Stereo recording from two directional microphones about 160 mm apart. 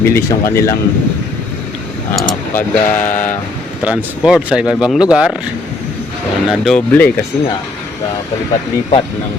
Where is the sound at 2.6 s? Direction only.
10° left (ahead or behind).